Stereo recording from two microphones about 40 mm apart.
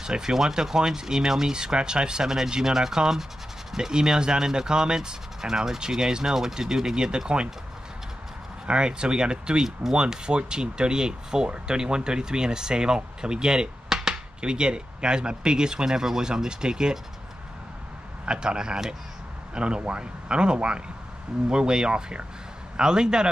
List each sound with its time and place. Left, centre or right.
0.0 s speech: centre
8.6 s speech: right
18.2 s speech: right